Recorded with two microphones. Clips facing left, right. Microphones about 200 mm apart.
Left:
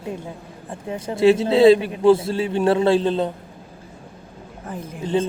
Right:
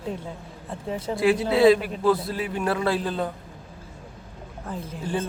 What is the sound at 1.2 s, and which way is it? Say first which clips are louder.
A man's voice: left 5 dB; 25° left (ahead or behind).